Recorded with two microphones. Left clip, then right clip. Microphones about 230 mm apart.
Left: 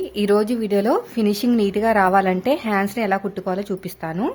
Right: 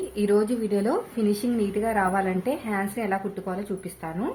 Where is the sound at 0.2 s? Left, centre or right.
Left.